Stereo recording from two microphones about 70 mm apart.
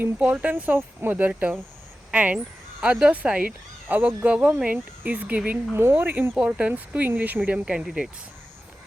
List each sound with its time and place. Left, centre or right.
0.2 s speech: right
5.5 s speech: right
7.6 s speech: centre